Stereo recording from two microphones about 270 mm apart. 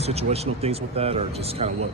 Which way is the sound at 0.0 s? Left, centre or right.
Right.